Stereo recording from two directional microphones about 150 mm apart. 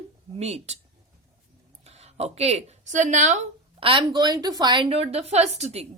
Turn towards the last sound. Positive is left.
turn(degrees=-45)  # may be behind; listen again after turning